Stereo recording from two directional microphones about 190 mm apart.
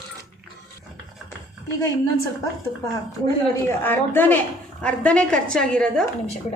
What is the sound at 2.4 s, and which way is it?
A woman's voice, 15° left (ahead or behind).